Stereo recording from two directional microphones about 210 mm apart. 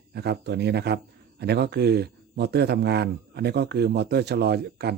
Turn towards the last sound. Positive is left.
turn(degrees=-50)  # may be behind; listen again after turning